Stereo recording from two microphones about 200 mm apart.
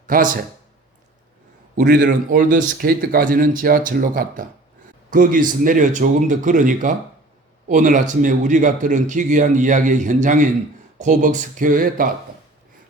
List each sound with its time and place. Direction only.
0.1 s speech: 45° right (ahead or behind)
1.7 s a man's voice: 45° right (ahead or behind)